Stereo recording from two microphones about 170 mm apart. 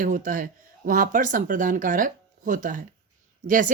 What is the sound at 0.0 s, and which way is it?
Speech, 50° right (ahead or behind).